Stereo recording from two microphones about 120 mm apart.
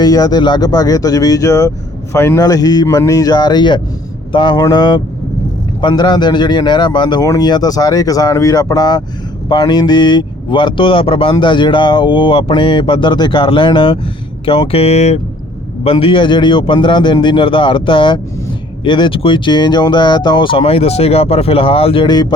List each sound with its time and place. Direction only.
0.0 s a man's voice: 30° left (ahead or behind)
2.4 s speech: 30° left (ahead or behind); by 15.2 s 65° left (ahead or behind)
15.8 s speech: 50° left (ahead or behind)